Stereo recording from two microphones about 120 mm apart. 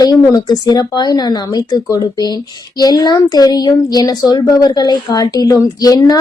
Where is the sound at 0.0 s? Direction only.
35° left (ahead or behind).